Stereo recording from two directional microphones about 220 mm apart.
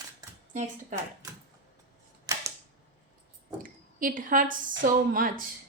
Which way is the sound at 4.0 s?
40° right (ahead or behind).